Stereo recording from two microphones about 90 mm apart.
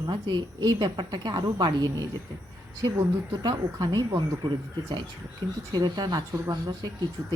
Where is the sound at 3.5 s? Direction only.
55° right (ahead or behind).